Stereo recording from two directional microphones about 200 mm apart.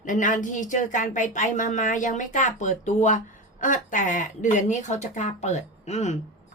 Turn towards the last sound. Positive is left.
turn(degrees=35)  # may be behind; listen again after turning